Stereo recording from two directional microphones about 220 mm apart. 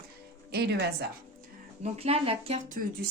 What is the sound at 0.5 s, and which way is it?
Speech, 50° right (ahead or behind).